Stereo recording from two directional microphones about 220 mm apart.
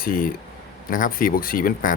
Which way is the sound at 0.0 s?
40° left (ahead or behind).